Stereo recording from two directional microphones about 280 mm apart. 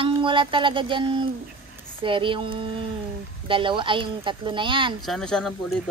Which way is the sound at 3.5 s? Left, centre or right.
Centre.